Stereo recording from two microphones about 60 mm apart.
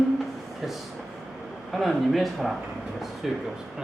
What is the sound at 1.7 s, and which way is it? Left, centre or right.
Speech, centre.